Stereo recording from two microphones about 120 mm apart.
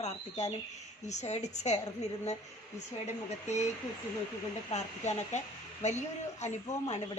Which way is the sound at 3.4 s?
75° left (ahead or behind).